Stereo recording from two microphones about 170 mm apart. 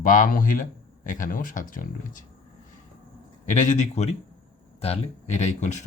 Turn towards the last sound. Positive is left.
turn(degrees=45)  # may be behind; listen again after turning